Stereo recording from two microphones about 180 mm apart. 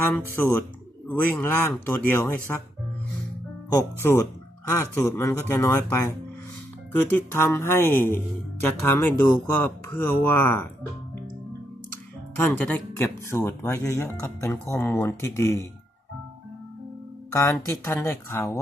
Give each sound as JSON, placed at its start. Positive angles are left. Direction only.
{"t": 0.0, "sound": "speech", "side_deg": 10}
{"t": 3.7, "sound": "speech", "side_deg": 15}
{"t": 12.4, "sound": "speech", "side_deg": 10}
{"t": 17.3, "sound": "speech", "side_deg": 15}